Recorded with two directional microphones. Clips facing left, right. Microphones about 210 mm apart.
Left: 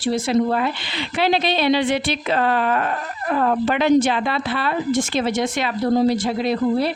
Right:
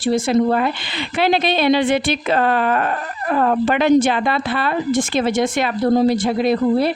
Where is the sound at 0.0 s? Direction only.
50° right (ahead or behind).